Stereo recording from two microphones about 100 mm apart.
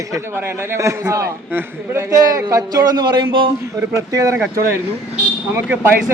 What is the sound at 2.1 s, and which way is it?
A man's voice, 35° right (ahead or behind).